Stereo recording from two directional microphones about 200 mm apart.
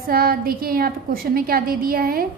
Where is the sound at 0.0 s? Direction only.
45° right (ahead or behind).